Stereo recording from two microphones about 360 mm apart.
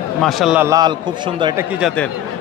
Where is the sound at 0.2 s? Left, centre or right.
Centre.